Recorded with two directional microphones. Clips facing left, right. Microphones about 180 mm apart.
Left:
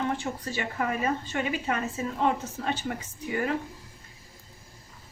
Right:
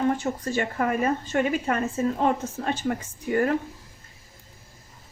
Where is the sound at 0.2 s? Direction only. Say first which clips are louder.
Right 6 dB; 45° right (ahead or behind).